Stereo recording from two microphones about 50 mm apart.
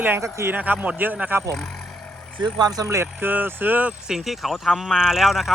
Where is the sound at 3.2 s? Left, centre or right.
Right.